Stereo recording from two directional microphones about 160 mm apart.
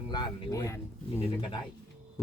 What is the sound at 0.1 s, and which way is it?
Speech, 25° left (ahead or behind).